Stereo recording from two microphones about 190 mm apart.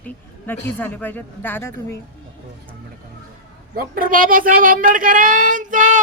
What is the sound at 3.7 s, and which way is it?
Speech, 50° right (ahead or behind).